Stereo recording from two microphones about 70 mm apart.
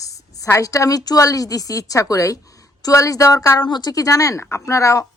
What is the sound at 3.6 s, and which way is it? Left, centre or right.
A woman's voice, left.